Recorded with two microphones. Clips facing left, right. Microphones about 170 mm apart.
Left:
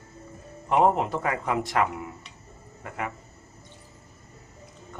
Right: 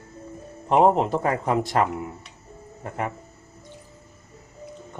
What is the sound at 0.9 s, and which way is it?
Speech, 30° right (ahead or behind).